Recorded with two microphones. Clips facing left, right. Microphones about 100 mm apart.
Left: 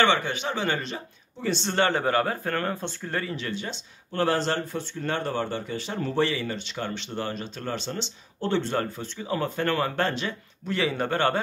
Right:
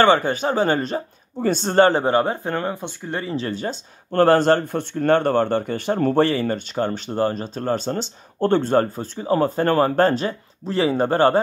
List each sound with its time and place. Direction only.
0.0 s speech: 40° right (ahead or behind); by 3.3 s 20° right (ahead or behind)
3.3 s speech: 40° right (ahead or behind)